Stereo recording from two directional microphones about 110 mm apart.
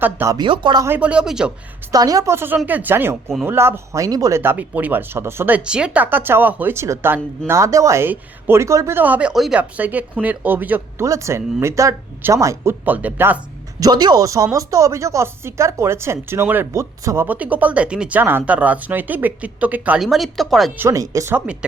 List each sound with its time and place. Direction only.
0.4 s speech: 50° right (ahead or behind)
0.9 s speech: 15° right (ahead or behind)
1.9 s speech: 35° right (ahead or behind)
9.0 s speech: 15° right (ahead or behind)
9.3 s speech: centre (ahead or behind)
9.6 s speech: 15° right (ahead or behind)
11.0 s speech: 30° right (ahead or behind)
12.8 s speech: 15° right (ahead or behind)
13.7 s speech: 35° right (ahead or behind); by 20.0 s 15° right (ahead or behind)
20.0 s speech: centre (ahead or behind)
20.7 s speech: 25° right (ahead or behind)